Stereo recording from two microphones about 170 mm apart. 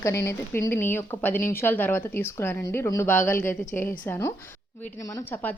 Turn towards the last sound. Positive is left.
turn(degrees=10)  # may be behind; listen again after turning